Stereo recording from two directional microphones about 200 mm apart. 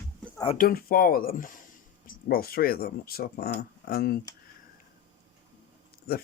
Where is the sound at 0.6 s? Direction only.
45° left (ahead or behind).